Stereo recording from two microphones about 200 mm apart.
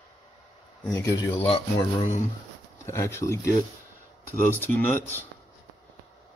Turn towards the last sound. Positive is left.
turn(degrees=10)  # may be behind; listen again after turning